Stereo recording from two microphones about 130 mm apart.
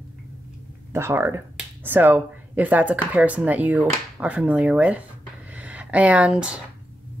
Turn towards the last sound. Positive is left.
turn(degrees=-10)  # may be behind; listen again after turning